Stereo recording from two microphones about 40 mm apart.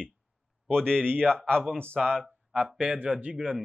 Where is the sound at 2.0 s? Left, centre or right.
Centre.